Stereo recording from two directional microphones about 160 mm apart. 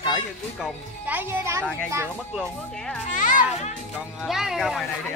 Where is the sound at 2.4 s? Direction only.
5° left (ahead or behind).